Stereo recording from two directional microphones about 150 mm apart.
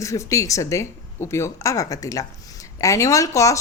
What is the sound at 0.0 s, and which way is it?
Speech, 20° left (ahead or behind).